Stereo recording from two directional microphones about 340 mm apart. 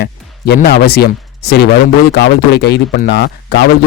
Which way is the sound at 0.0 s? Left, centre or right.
Left.